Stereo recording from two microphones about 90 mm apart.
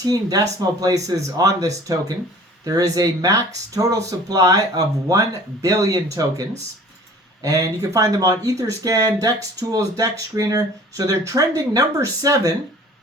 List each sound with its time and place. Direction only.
0.0 s speech: 45° right (ahead or behind)
7.4 s speech: 40° right (ahead or behind)